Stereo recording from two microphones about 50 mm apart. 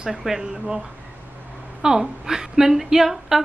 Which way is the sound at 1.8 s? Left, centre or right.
Centre.